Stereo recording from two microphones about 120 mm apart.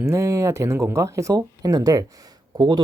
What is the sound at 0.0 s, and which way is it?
Speech, 25° right (ahead or behind).